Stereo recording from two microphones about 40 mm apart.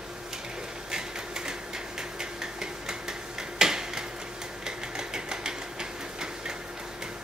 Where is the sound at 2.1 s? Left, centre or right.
Centre.